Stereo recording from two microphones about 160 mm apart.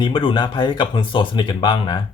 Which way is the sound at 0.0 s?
30° left (ahead or behind).